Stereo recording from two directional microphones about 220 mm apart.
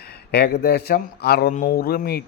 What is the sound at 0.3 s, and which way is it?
Speech, 45° left (ahead or behind).